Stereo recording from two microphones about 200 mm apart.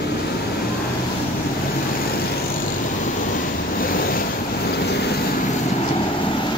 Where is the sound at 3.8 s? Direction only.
45° left (ahead or behind).